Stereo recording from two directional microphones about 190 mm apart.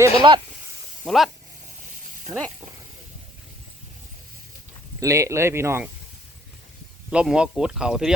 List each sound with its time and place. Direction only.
0.0 s speech: 25° right (ahead or behind)
1.0 s speech: centre (ahead or behind)
4.9 s speech: 15° right (ahead or behind)
7.1 s speech: 5° right (ahead or behind)